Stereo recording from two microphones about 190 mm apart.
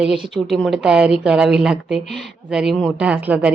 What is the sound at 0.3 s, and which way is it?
Speech, centre (ahead or behind).